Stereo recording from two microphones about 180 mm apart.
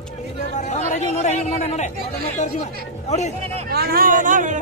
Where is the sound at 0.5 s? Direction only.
40° left (ahead or behind).